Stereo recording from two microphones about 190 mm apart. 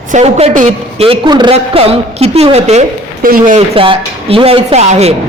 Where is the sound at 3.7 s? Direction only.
30° right (ahead or behind).